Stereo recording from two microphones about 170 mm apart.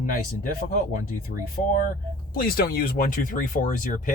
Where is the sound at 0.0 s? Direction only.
50° left (ahead or behind).